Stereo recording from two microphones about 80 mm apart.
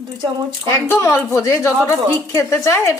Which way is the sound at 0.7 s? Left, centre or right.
Left.